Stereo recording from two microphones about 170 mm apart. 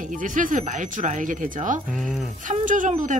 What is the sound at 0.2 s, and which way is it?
Speech, 50° right (ahead or behind).